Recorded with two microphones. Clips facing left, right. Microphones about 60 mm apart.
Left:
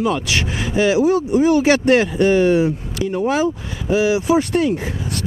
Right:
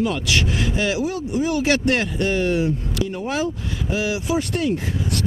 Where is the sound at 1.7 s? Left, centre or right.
Centre.